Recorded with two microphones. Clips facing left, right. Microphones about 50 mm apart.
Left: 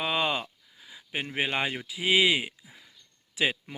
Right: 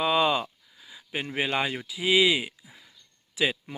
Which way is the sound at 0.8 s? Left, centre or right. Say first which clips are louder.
Right 1 dB; centre.